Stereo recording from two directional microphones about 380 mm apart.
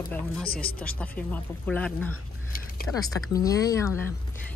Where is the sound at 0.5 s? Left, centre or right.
Left.